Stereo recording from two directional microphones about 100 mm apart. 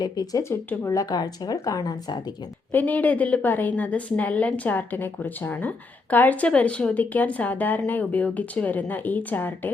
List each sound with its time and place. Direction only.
0.0 s a woman's voice: 40° left (ahead or behind)
0.4 s speech: 20° left (ahead or behind)
0.9 s a woman's voice: 40° left (ahead or behind)
2.7 s a woman's voice: 15° left (ahead or behind)